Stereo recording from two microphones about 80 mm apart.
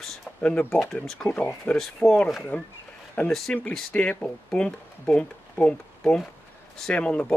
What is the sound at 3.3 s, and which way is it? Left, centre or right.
Speech, centre.